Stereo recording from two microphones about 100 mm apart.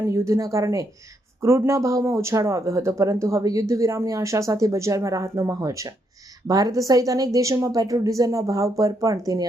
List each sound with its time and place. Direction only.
0.0 s speech: 30° right (ahead or behind)